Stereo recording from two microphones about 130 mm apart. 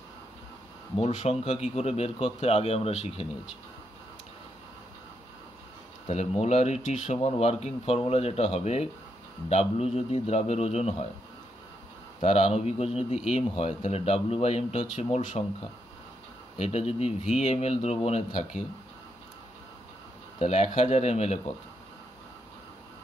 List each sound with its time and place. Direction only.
1.2 s speech: 55° left (ahead or behind)
6.0 s speech: 55° left (ahead or behind)
12.2 s speech: 55° left (ahead or behind)
16.5 s speech: 55° left (ahead or behind)
20.3 s speech: 55° left (ahead or behind)